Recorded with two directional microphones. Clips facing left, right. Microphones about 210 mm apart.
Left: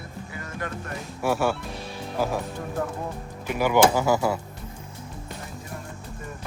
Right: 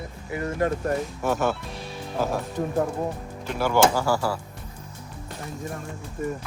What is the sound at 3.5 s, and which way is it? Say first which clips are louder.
Speech: left 1 dB; 15° left (ahead or behind).